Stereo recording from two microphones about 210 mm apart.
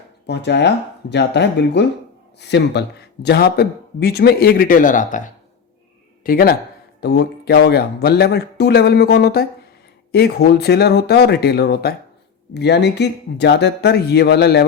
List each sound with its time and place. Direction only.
0.3 s speech: 55° left (ahead or behind); by 5.2 s 40° left (ahead or behind)
6.2 s speech: 45° left (ahead or behind)